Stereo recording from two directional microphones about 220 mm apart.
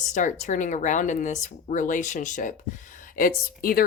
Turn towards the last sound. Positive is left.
turn(degrees=40)  # may be behind; listen again after turning